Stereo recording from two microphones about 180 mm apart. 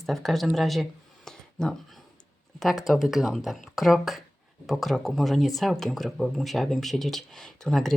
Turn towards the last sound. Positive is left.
turn(degrees=0)  # may be behind; listen again after turning